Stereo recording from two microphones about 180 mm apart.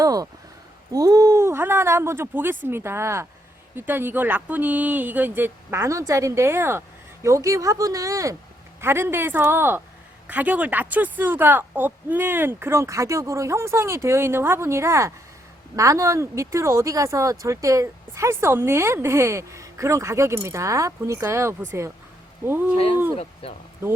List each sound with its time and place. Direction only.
0.0 s a sound: 20° right (ahead or behind)
0.9 s speech: 20° right (ahead or behind)
23.1 s speech: 35° left (ahead or behind)